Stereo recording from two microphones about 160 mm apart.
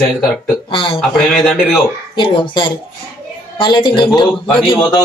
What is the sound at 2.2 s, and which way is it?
Speech, 30° left (ahead or behind).